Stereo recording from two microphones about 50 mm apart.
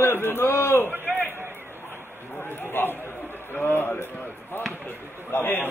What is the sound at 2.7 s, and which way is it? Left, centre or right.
Speech, left.